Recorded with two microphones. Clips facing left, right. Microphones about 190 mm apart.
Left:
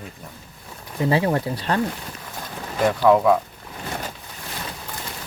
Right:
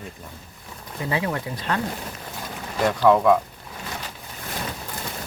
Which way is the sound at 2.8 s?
5° left (ahead or behind).